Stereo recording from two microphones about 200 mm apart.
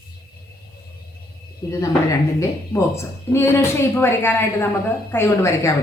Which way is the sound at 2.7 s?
15° left (ahead or behind).